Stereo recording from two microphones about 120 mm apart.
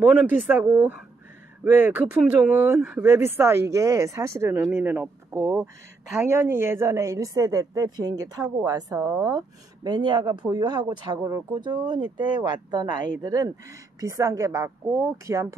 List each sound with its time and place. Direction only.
0.0 s speech: 15° right (ahead or behind)
9.8 s speech: 40° right (ahead or behind)